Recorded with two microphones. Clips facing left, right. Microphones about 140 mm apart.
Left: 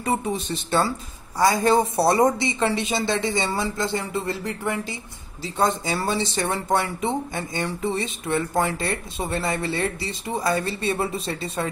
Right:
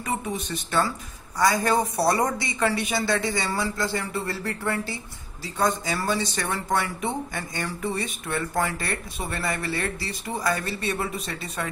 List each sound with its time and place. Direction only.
0.0 s speech: 30° left (ahead or behind)